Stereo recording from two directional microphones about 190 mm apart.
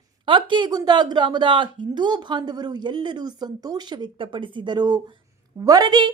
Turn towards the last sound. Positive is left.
turn(degrees=-20)  # may be behind; listen again after turning